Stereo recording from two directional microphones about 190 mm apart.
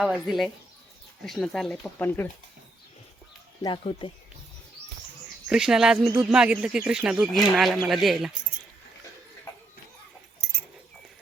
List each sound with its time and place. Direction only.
0.0 s speech: centre (ahead or behind)
3.6 s speech: 25° left (ahead or behind)
5.5 s speech: 5° right (ahead or behind)